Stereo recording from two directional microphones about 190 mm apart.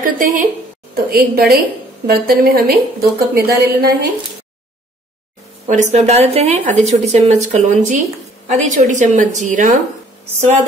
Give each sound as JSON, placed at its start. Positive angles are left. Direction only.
{"t": 0.0, "sound": "a woman's voice", "side_deg": -45}
{"t": 0.9, "sound": "a woman's voice", "side_deg": -55}
{"t": 5.7, "sound": "speech", "side_deg": -40}